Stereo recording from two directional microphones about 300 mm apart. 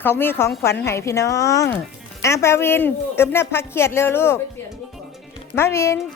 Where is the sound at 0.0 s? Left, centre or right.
Centre.